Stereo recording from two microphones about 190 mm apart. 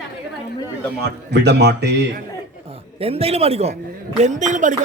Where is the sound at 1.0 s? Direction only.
60° right (ahead or behind).